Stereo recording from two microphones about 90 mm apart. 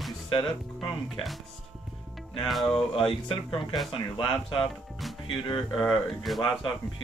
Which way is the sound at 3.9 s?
70° left (ahead or behind).